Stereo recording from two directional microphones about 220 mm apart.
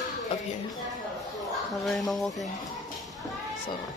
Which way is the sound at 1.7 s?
Centre (ahead or behind).